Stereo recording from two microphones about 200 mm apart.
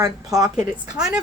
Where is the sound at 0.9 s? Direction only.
5° right (ahead or behind).